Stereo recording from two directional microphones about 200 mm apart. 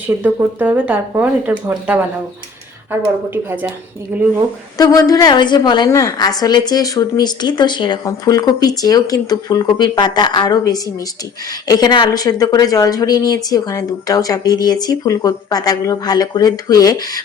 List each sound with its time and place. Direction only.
0.2 s speech: 10° right (ahead or behind)
3.2 s speech: 10° right (ahead or behind)
4.8 s a woman's voice: 20° left (ahead or behind)